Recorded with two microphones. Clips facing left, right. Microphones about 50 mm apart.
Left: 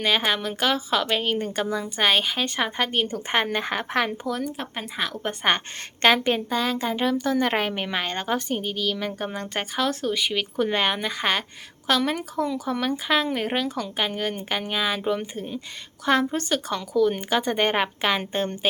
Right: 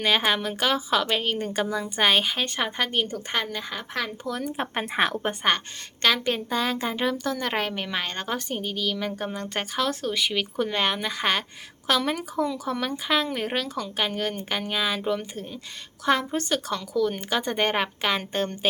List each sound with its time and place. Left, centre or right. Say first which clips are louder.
0.0 s a woman's voice: even; centre
3.3 s speech: left 6 dB; left
4.4 s speech: right 3 dB; right
6.1 s speech: left 3 dB; centre
6.5 s a woman's voice: left 1 dB; centre
7.3 s a woman's voice: left 4 dB; centre